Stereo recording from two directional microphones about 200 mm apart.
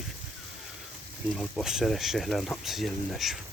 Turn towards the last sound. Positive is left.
turn(degrees=0)  # may be behind; listen again after turning